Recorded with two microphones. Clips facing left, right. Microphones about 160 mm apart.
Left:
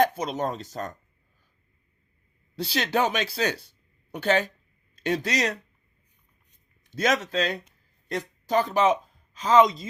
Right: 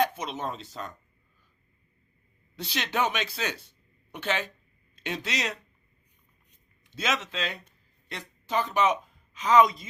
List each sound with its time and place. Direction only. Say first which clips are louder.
0.0 s speech: left 4 dB; 40° left (ahead or behind)
2.6 s speech: left 4 dB; 35° left (ahead or behind)
6.8 s speech: left 6 dB; 40° left (ahead or behind)